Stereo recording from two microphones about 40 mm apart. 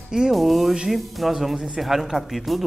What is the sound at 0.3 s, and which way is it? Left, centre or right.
Speech, centre.